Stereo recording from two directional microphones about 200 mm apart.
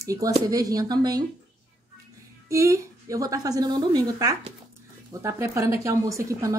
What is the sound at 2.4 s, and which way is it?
A woman's voice, 15° right (ahead or behind).